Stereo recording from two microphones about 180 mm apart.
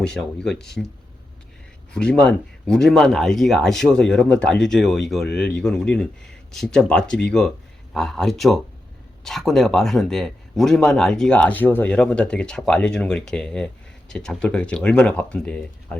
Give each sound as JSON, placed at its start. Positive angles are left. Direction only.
{"t": 0.0, "sound": "speech", "side_deg": 5}
{"t": 1.9, "sound": "speech", "side_deg": 5}